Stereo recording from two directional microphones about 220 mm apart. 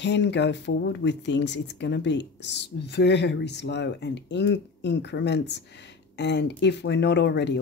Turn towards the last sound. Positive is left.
turn(degrees=50)  # may be behind; listen again after turning